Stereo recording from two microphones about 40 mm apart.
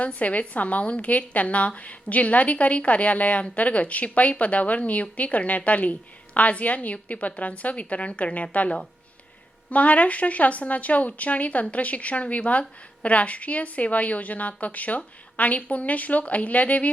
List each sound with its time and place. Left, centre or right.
0.0 s a woman's voice: left